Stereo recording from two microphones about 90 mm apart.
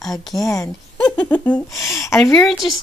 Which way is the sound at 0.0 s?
Centre (ahead or behind).